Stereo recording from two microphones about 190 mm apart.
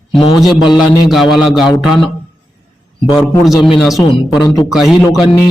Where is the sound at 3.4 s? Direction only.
Centre (ahead or behind).